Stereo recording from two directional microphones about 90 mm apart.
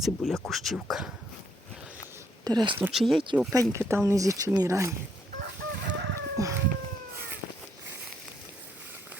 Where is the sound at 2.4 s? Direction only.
45° right (ahead or behind).